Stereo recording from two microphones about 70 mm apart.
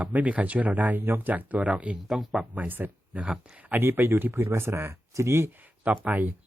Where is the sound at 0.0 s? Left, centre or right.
Right.